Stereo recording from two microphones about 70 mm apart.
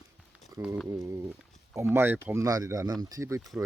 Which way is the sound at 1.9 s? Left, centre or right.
Right.